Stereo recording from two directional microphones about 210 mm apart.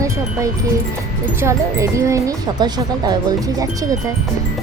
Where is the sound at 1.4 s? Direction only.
15° right (ahead or behind).